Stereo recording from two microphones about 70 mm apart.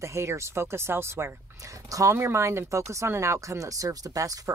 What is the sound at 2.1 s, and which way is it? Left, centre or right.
Speech, right.